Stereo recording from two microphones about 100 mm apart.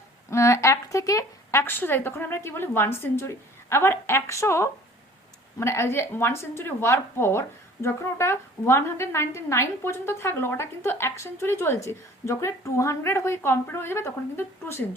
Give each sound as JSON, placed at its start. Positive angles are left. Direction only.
{"t": 0.3, "sound": "a woman's voice", "side_deg": 30}